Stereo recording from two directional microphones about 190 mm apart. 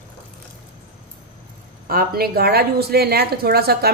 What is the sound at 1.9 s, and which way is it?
A woman's voice, 50° right (ahead or behind).